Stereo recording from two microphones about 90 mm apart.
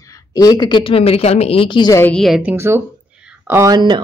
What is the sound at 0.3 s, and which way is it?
Speech, 45° left (ahead or behind).